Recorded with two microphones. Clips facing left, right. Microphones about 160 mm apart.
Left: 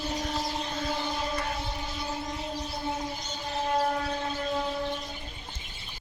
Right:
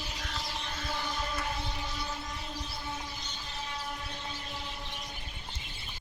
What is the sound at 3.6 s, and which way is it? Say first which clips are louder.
Train: left 15 dB; 60° left (ahead or behind).